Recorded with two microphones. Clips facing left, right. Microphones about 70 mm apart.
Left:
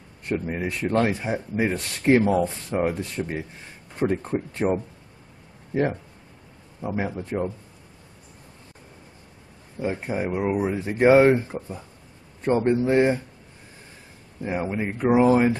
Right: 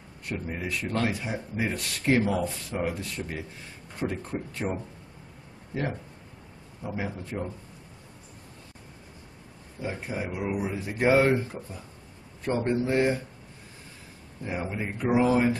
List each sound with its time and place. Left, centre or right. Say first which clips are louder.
0.3 s speech: left 6 dB; left
6.8 s a man's voice: left 6 dB; left
9.8 s speech: left 6 dB; left
14.7 s speech: left 5 dB; left